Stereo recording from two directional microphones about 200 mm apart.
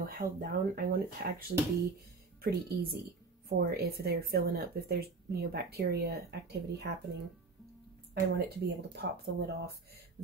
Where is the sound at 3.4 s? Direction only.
50° right (ahead or behind).